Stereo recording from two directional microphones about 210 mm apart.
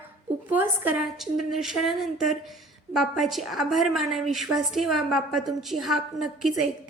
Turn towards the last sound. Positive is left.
turn(degrees=0)  # may be behind; listen again after turning